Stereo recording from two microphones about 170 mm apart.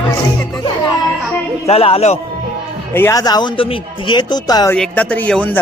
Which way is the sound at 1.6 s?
35° left (ahead or behind).